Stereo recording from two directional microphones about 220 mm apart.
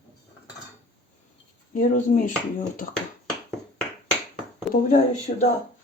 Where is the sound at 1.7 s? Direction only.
35° left (ahead or behind).